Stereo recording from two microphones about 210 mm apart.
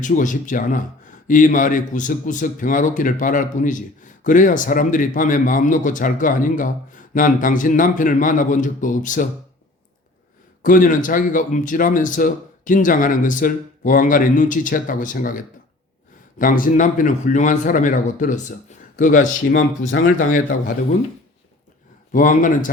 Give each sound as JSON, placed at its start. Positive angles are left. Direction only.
{"t": 0.0, "sound": "speech", "side_deg": 35}
{"t": 10.6, "sound": "speech", "side_deg": 40}
{"t": 19.9, "sound": "speech", "side_deg": 50}
{"t": 22.1, "sound": "speech", "side_deg": 40}